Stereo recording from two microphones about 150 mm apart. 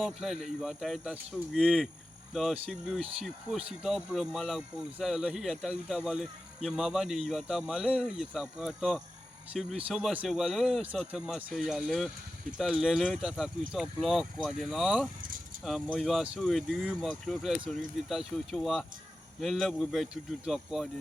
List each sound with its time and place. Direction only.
0.0 s speech: centre (ahead or behind)
11.5 s speech: centre (ahead or behind)